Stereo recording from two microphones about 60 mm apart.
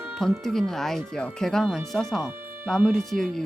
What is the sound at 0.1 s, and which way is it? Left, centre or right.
Speech, centre.